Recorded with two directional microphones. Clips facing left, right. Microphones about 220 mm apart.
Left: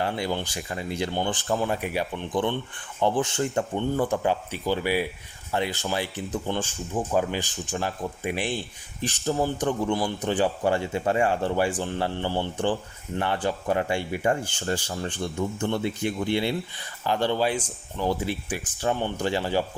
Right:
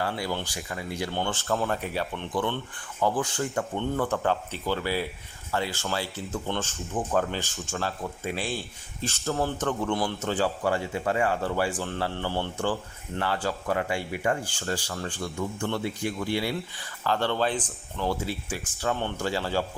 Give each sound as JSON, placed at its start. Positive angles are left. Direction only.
{"t": 0.0, "sound": "speech", "side_deg": 20}
{"t": 9.9, "sound": "a man's voice", "side_deg": 0}
{"t": 10.2, "sound": "speech", "side_deg": 15}